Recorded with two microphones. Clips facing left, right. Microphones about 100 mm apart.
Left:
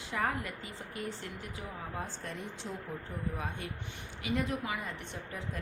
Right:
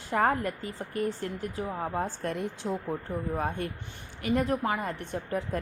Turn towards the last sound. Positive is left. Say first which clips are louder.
# right 10 dB
turn(degrees=-50)  # may be behind; listen again after turning